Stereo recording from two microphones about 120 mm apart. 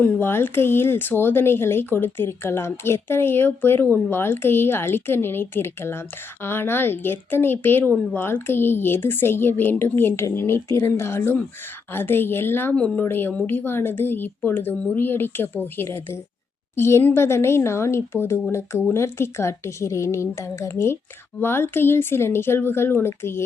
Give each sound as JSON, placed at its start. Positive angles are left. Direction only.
{"t": 0.0, "sound": "speech", "side_deg": 15}
{"t": 12.7, "sound": "speech", "side_deg": 10}